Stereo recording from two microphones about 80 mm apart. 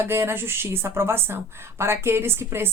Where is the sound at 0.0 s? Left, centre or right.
Right.